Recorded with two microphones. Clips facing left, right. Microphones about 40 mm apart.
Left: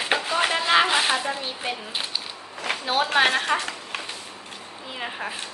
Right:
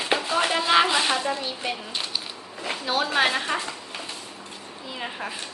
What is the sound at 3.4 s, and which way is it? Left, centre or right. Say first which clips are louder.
Speech: left 3 dB; left.